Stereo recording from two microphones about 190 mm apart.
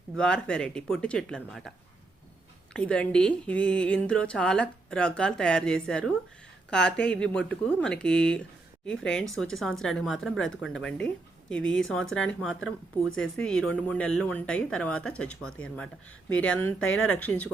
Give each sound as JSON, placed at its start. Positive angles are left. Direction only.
{"t": 0.2, "sound": "speech", "side_deg": 5}
{"t": 2.7, "sound": "speech", "side_deg": 5}
{"t": 16.8, "sound": "speech", "side_deg": 90}
{"t": 17.2, "sound": "speech", "side_deg": 10}